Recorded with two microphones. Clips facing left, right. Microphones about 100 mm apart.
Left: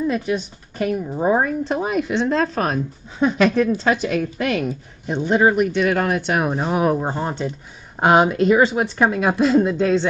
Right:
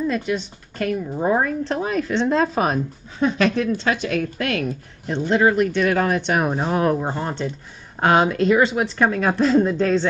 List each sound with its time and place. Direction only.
0.0 s speech: 15° left (ahead or behind)
2.2 s speech: 5° right (ahead or behind)
3.2 s speech: 15° left (ahead or behind)
6.7 s speech: 15° left (ahead or behind)